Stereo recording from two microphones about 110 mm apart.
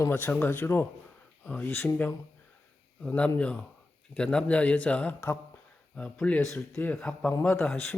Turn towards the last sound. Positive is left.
turn(degrees=15)  # may be behind; listen again after turning